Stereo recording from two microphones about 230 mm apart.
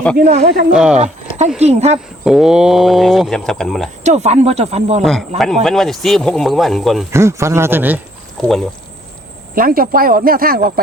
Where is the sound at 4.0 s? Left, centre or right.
Right.